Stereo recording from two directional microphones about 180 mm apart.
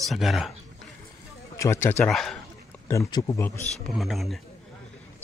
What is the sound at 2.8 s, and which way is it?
Speech, 15° left (ahead or behind).